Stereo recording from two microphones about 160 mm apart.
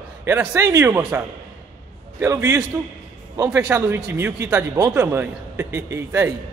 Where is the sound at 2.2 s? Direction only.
20° right (ahead or behind).